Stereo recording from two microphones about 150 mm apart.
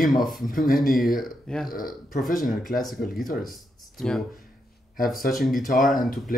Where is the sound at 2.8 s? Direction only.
Centre (ahead or behind).